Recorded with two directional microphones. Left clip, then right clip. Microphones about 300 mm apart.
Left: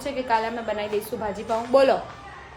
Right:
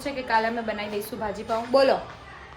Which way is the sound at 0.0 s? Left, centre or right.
Centre.